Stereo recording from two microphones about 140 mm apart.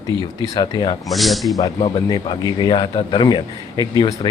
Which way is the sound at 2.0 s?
30° left (ahead or behind).